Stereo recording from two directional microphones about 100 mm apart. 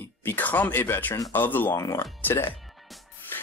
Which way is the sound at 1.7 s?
35° left (ahead or behind).